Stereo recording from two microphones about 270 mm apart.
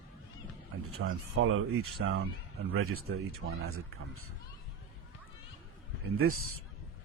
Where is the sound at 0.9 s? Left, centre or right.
Right.